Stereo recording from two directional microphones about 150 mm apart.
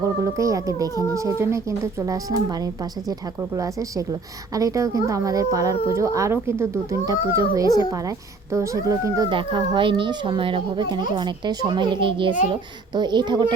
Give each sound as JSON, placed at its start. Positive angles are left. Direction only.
{"t": 0.3, "sound": "speech", "side_deg": -20}
{"t": 9.3, "sound": "a child's voice", "side_deg": -35}